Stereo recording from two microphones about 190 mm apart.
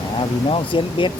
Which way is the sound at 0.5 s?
25° left (ahead or behind).